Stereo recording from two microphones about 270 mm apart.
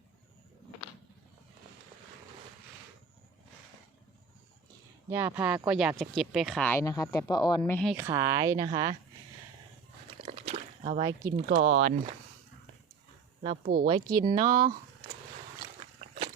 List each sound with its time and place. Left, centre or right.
5.0 s speech: centre
7.6 s speech: centre
7.9 s speech: centre
10.2 s a sound: right
11.3 s speech: right
13.8 s speech: centre